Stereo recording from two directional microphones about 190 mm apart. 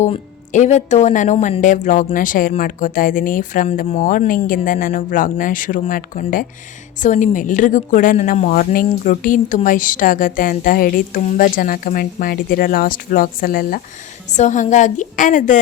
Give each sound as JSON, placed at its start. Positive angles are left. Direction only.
{"t": 0.0, "sound": "a woman's voice", "side_deg": 40}